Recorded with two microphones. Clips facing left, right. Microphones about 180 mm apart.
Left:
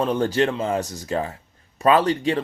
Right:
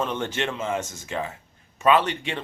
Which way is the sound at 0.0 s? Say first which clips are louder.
Left 7 dB; 35° left (ahead or behind).